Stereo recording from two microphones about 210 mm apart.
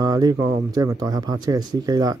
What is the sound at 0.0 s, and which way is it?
Speech, 20° right (ahead or behind).